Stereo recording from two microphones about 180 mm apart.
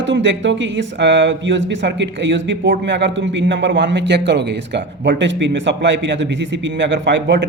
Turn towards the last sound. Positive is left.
turn(degrees=-85)